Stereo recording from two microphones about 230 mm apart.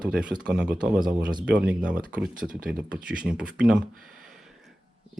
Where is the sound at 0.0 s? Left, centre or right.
Centre.